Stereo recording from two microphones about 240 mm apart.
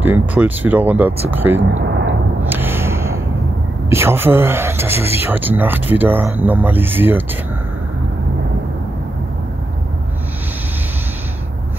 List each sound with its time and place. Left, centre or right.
0.0 s speech: centre
2.4 s a sound: centre
3.9 s speech: centre